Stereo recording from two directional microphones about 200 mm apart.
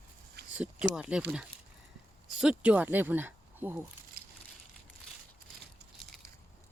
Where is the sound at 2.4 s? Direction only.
5° right (ahead or behind).